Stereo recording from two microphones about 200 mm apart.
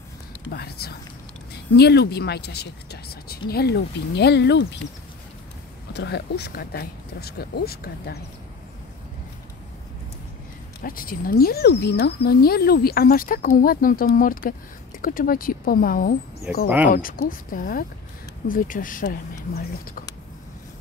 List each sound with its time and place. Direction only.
0.5 s speech: 50° left (ahead or behind)
5.9 s speech: 60° left (ahead or behind)
10.8 s speech: 45° left (ahead or behind)
16.6 s speech: 10° right (ahead or behind)
16.9 s speech: 45° left (ahead or behind)